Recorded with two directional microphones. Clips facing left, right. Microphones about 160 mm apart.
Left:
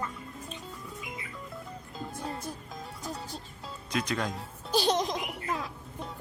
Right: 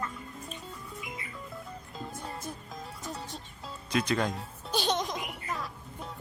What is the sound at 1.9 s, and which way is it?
Music, centre (ahead or behind).